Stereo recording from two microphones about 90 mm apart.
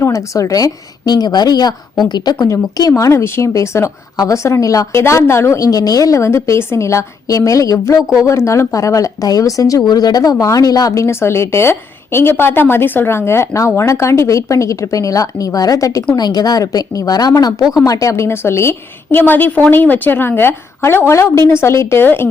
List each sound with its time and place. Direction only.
0.0 s a woman's voice: 35° left (ahead or behind)